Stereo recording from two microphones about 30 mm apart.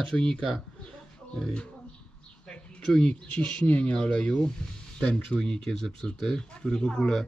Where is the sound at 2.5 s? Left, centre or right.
Left.